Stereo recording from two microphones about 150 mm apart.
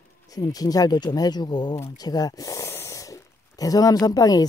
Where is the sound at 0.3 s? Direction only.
25° left (ahead or behind).